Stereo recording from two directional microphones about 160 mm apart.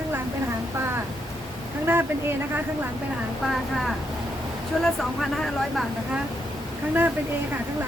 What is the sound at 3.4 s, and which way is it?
Speech, centre (ahead or behind).